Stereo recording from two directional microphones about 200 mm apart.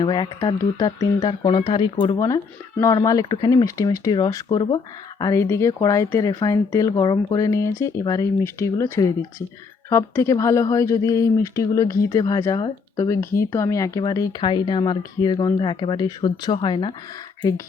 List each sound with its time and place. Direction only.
0.0 s speech: 20° left (ahead or behind)